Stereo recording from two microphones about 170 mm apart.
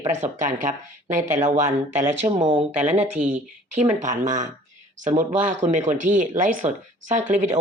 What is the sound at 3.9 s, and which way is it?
Speech, 45° right (ahead or behind).